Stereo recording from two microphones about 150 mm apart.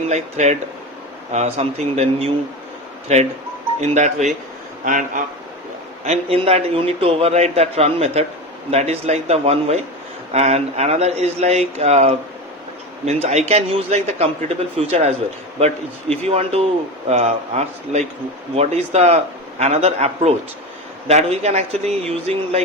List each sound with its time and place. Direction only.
0.1 s a man's voice: 45° right (ahead or behind)
6.1 s a man's voice: 40° right (ahead or behind)